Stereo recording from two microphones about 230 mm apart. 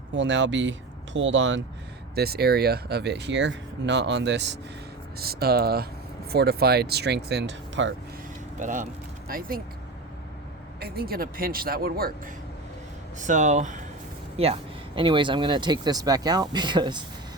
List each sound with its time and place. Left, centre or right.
0.2 s speech: right
8.5 s speech: right
10.8 s a man's voice: right; by 17.0 s centre